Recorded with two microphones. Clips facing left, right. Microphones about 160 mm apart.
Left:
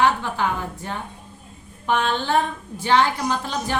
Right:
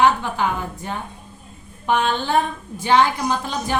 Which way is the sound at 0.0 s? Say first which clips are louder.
Right 2 dB; 15° right (ahead or behind).